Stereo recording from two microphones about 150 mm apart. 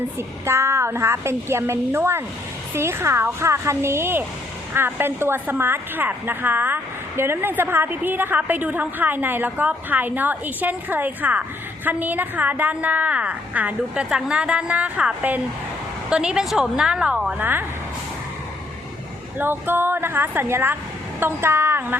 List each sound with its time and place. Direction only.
0.2 s a woman's voice: 15° right (ahead or behind)
19.4 s a woman's voice: 15° right (ahead or behind)